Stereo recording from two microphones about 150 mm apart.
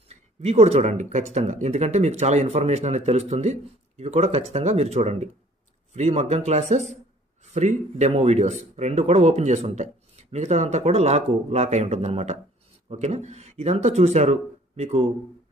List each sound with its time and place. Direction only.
0.1 s speech: 45° right (ahead or behind)